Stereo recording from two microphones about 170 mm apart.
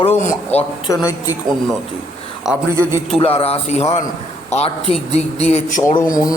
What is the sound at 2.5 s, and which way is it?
Speech, 5° right (ahead or behind).